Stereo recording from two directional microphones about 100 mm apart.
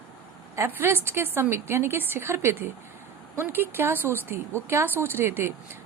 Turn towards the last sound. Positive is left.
turn(degrees=-25)  # may be behind; listen again after turning